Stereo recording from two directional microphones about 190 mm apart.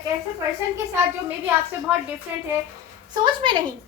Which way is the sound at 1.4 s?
10° right (ahead or behind).